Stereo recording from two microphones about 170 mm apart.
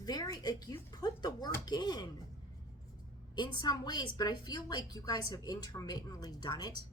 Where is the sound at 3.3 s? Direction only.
25° left (ahead or behind).